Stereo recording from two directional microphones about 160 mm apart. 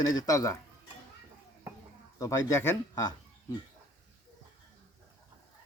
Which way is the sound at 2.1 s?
20° left (ahead or behind).